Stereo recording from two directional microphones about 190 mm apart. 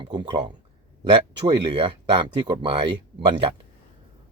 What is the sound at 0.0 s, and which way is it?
Speech, 25° right (ahead or behind).